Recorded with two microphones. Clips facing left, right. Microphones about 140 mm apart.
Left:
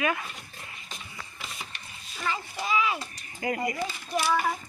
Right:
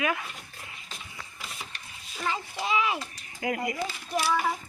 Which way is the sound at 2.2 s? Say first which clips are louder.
Right 1 dB; 20° right (ahead or behind).